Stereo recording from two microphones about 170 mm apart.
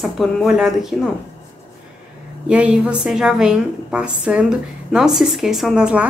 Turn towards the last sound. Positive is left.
turn(degrees=-5)  # may be behind; listen again after turning